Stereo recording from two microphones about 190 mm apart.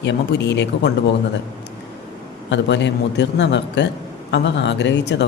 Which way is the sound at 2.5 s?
65° left (ahead or behind).